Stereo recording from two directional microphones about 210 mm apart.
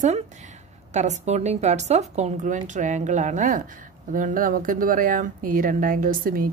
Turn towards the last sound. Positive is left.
turn(degrees=-45)  # may be behind; listen again after turning